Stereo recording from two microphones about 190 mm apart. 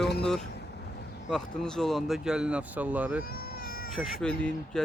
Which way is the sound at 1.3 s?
5° left (ahead or behind).